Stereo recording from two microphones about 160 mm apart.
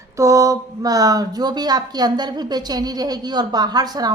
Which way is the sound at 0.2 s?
20° right (ahead or behind).